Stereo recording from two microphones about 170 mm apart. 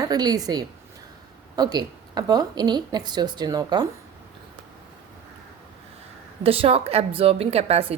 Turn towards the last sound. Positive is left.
turn(degrees=-35)  # may be behind; listen again after turning